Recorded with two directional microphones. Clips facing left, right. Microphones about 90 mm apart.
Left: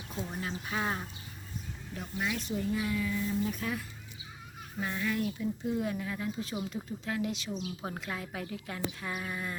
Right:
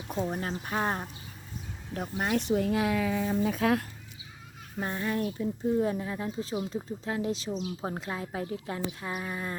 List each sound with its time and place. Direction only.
0.2 s speech: 45° right (ahead or behind); by 3.8 s 85° right
4.8 s a woman's voice: 35° right (ahead or behind)